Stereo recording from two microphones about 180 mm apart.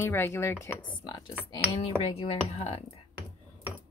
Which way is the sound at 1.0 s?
25° left (ahead or behind).